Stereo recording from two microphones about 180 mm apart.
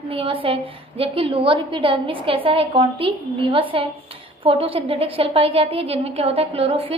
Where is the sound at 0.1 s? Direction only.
30° right (ahead or behind).